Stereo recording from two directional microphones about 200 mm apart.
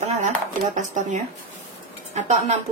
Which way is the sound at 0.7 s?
40° right (ahead or behind).